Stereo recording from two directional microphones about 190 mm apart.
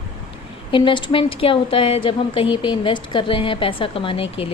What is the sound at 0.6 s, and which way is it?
A woman's voice, 25° left (ahead or behind).